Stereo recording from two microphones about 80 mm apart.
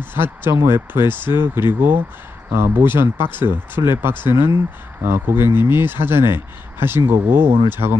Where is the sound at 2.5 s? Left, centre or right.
Right.